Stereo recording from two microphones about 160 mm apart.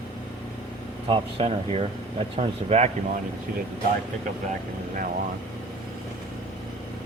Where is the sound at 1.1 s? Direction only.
35° right (ahead or behind).